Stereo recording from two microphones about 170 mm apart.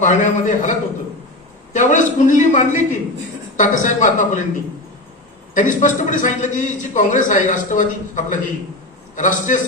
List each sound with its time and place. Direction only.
0.0 s a man's voice: 50° left (ahead or behind)
1.7 s a man's voice: 50° left (ahead or behind)
5.5 s a man's voice: 50° left (ahead or behind)